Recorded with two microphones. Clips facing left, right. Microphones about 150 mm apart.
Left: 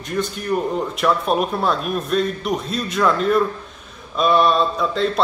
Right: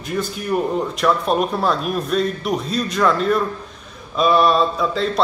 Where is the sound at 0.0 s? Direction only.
5° right (ahead or behind).